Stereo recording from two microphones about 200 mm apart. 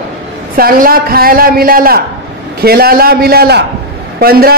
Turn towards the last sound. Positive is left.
turn(degrees=-50)  # may be behind; listen again after turning